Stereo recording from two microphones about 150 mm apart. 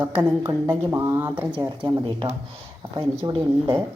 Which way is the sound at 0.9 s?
20° right (ahead or behind).